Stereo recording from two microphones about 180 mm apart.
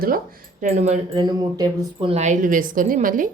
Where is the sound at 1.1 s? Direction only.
25° right (ahead or behind).